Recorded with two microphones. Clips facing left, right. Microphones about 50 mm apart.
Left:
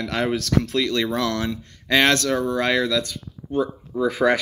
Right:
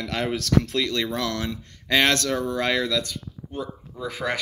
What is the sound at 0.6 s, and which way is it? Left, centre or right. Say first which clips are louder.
Speech: left 3 dB; centre.